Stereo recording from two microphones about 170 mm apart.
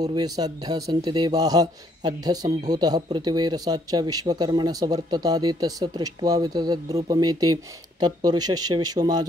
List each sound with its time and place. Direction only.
0.0 s speech: 25° right (ahead or behind)